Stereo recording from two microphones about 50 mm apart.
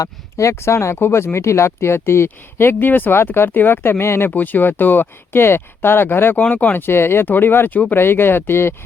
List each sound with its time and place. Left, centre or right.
0.3 s speech: left
0.9 s speech: left
2.7 s speech: left
4.3 s speech: left